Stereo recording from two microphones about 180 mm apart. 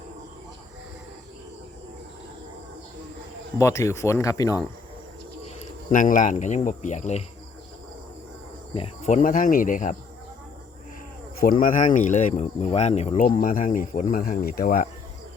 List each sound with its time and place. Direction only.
3.6 s speech: 15° left (ahead or behind)
5.9 s speech: 45° left (ahead or behind)
8.7 s speech: 35° left (ahead or behind)
11.3 s speech: 55° left (ahead or behind)